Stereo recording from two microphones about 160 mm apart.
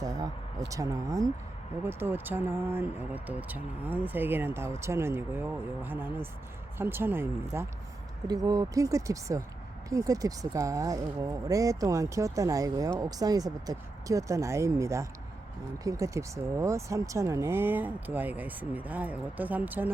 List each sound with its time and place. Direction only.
0.0 s speech: 20° right (ahead or behind)